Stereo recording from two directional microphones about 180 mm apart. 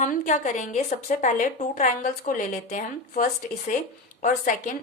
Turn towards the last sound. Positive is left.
turn(degrees=50)  # may be behind; listen again after turning